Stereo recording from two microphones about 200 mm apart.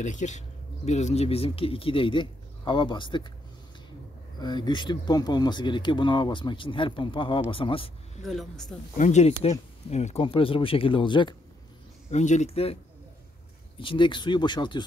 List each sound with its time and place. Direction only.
0.0 s speech: 35° left (ahead or behind)
4.4 s speech: 20° left (ahead or behind)
8.2 s speech: centre (ahead or behind)
8.9 s speech: 35° left (ahead or behind)
12.1 s speech: 35° left (ahead or behind)
13.7 s speech: 25° left (ahead or behind)